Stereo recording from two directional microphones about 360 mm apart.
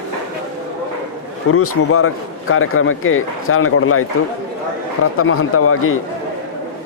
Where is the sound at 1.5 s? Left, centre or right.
Left.